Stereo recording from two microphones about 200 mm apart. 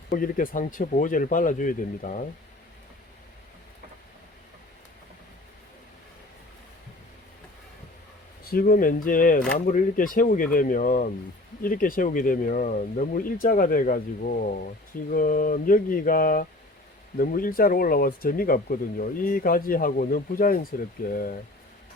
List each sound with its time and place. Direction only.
0.1 s speech: 45° left (ahead or behind)
8.4 s speech: 50° left (ahead or behind)